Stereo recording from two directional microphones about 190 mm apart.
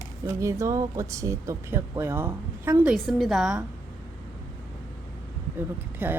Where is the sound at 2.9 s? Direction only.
Centre (ahead or behind).